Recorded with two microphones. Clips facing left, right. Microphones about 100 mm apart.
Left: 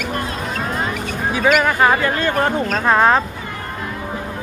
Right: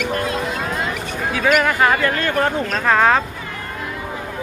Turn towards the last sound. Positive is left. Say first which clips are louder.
# left 1 dB
turn(degrees=15)  # may be behind; listen again after turning